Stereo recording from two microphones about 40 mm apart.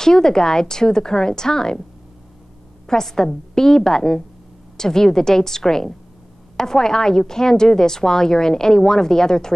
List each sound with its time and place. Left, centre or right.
0.0 s a woman's voice: centre
2.9 s a woman's voice: centre